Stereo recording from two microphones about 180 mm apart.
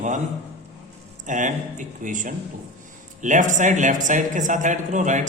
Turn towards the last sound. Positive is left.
turn(degrees=-45)  # may be behind; listen again after turning